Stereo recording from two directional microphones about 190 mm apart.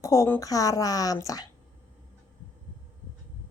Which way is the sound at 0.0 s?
15° left (ahead or behind).